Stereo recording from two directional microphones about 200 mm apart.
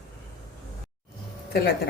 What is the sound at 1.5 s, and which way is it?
Speech, 55° left (ahead or behind).